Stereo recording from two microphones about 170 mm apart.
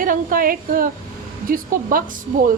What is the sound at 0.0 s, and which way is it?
A woman's voice, 55° right (ahead or behind).